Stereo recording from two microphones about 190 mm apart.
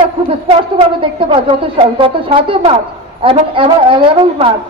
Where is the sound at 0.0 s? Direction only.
25° right (ahead or behind).